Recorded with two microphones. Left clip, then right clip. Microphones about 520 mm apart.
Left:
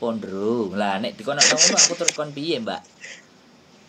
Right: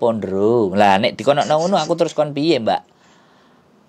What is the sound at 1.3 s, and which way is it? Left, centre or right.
Speech, left.